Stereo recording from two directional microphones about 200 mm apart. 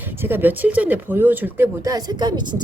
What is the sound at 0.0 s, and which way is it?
Speech, 10° right (ahead or behind).